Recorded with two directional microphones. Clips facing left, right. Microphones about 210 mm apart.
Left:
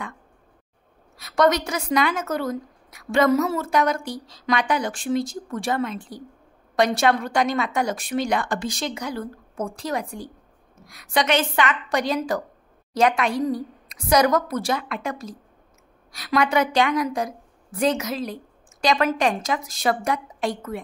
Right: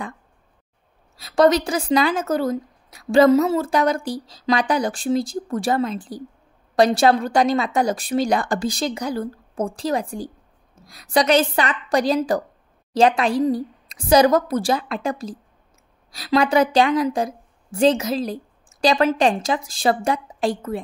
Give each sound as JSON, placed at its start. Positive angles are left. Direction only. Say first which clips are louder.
{"t": 1.1, "sound": "a woman's voice", "louder": "right 4 dB", "side_deg": -30}